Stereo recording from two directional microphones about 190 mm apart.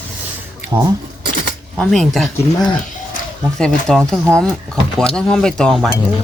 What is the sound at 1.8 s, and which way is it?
Speech, centre (ahead or behind).